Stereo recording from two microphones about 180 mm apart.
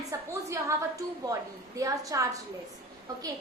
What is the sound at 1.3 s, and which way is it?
A woman's voice, 20° right (ahead or behind).